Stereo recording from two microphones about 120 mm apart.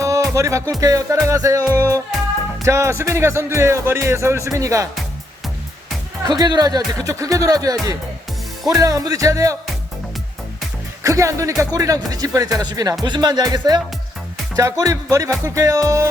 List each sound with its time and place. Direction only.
0.0 s music: 25° right (ahead or behind)
2.6 s speech: 25° right (ahead or behind)
6.2 s speech: 35° right (ahead or behind)
11.0 s speech: 25° right (ahead or behind)